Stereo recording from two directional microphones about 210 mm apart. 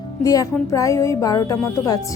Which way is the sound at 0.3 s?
15° left (ahead or behind).